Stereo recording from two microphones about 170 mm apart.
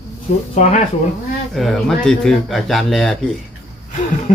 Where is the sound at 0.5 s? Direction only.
45° left (ahead or behind).